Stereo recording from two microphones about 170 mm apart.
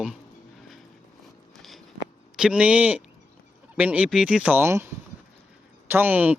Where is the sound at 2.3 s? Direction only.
5° right (ahead or behind).